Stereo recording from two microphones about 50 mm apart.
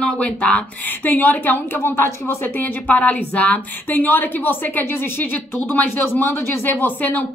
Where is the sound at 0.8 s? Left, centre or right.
Left.